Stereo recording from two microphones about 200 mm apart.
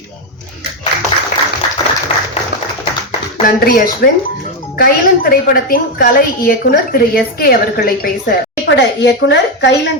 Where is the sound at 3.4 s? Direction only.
45° left (ahead or behind).